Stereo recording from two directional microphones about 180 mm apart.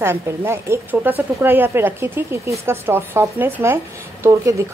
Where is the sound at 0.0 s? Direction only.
15° right (ahead or behind).